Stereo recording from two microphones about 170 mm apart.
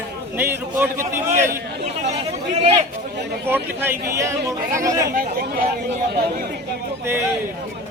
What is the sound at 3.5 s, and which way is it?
A man's voice, 10° right (ahead or behind).